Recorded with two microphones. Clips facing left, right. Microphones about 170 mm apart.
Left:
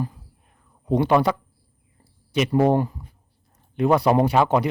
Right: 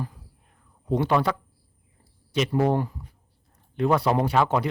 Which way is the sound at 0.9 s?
15° left (ahead or behind).